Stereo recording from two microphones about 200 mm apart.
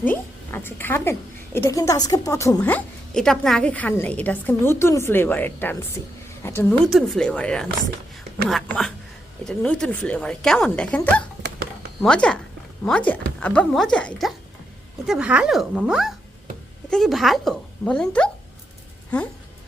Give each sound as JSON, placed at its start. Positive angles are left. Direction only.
{"t": 0.0, "sound": "a woman's voice", "side_deg": 10}
{"t": 2.6, "sound": "a woman's voice", "side_deg": 5}